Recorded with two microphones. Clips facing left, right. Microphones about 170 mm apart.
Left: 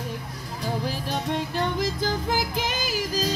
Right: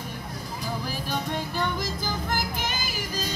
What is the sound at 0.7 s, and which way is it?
Music, 25° left (ahead or behind).